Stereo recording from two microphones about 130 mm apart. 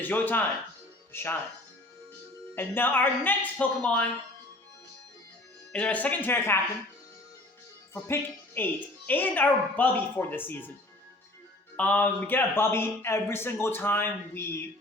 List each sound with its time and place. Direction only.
0.0 s a man's voice: 15° left (ahead or behind)
2.6 s a man's voice: 15° left (ahead or behind)
5.7 s a man's voice: 10° left (ahead or behind)
7.9 s a man's voice: 20° left (ahead or behind)
11.8 s a man's voice: 15° left (ahead or behind)